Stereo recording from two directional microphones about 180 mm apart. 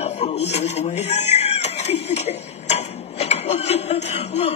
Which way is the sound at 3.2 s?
40° left (ahead or behind).